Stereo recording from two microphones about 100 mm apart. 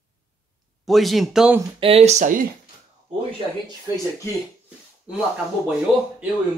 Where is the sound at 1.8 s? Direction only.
80° right.